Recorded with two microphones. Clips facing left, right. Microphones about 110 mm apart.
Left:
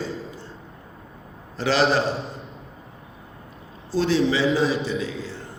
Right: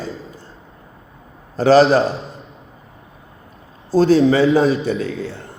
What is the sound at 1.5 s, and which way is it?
Speech, 45° right (ahead or behind).